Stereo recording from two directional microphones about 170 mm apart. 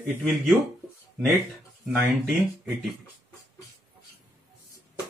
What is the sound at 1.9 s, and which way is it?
Speech, centre (ahead or behind).